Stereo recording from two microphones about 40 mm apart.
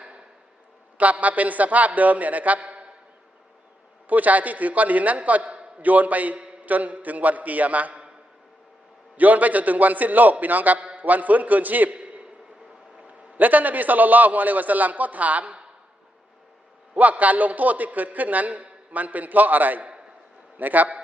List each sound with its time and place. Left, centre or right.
0.9 s a man's voice: right
4.1 s a man's voice: right
5.8 s a man's voice: right
9.1 s a man's voice: right
11.9 s a sound: right
13.1 s a man's voice: right
16.9 s a man's voice: right